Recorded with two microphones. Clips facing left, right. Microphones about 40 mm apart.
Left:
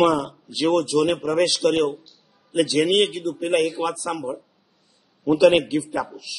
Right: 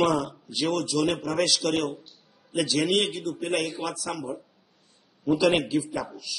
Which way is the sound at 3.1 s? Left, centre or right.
Centre.